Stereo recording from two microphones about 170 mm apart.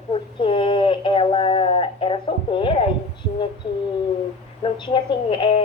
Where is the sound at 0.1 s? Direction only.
30° left (ahead or behind).